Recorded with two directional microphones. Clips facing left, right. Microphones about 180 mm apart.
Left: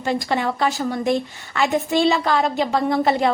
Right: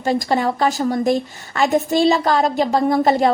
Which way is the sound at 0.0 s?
40° right (ahead or behind).